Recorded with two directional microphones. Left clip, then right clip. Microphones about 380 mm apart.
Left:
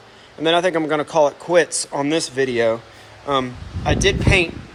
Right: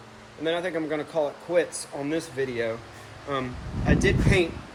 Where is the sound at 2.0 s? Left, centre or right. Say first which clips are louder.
Left 8 dB; centre.